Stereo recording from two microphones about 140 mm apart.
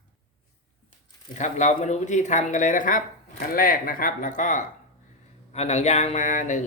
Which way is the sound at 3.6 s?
90° left.